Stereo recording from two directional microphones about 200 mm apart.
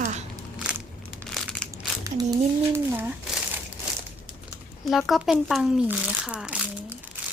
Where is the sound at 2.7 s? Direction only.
10° right (ahead or behind).